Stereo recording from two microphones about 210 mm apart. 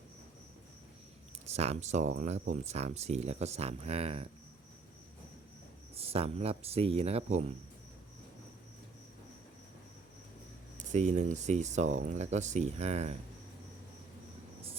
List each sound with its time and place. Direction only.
1.5 s speech: 30° right (ahead or behind)
5.9 s speech: 30° right (ahead or behind)
10.8 s speech: 35° right (ahead or behind)